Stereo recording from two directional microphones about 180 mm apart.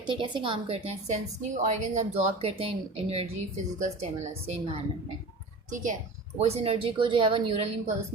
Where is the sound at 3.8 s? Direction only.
35° right (ahead or behind).